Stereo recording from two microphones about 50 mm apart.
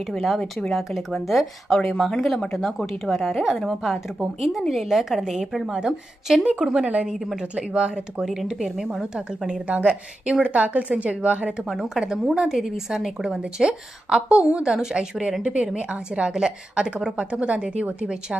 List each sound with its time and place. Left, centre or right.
0.7 s a woman's voice: centre
7.1 s a woman's voice: centre
7.3 s a woman's voice: centre
9.8 s a woman's voice: right